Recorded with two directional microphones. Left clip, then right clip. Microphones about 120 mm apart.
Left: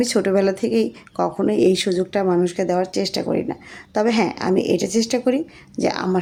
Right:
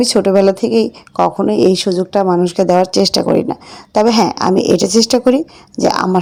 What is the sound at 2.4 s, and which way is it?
Speech, 45° right (ahead or behind).